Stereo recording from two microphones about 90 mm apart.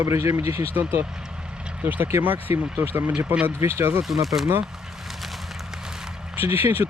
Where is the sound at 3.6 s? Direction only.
30° right (ahead or behind).